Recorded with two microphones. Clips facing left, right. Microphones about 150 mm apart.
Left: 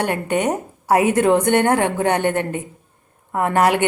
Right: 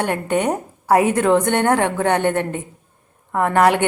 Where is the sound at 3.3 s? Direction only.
15° left (ahead or behind).